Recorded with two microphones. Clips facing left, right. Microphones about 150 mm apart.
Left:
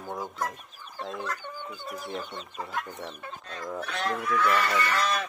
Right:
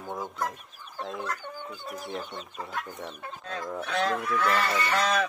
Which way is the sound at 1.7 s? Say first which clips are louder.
Even; centre (ahead or behind).